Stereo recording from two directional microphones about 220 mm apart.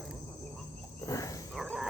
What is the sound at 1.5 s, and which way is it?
Dog, centre (ahead or behind).